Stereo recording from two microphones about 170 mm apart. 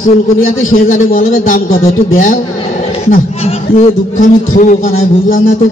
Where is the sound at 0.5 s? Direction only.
55° left (ahead or behind).